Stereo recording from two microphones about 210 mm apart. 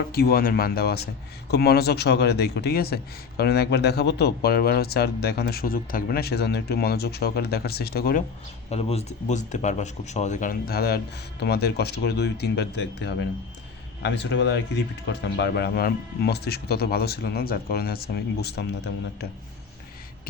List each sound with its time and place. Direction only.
0.1 s a man's voice: 45° left (ahead or behind)
8.7 s a man's voice: 30° left (ahead or behind); by 19.3 s 50° left (ahead or behind)